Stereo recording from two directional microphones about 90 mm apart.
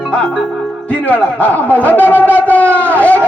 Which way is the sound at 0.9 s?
15° left (ahead or behind).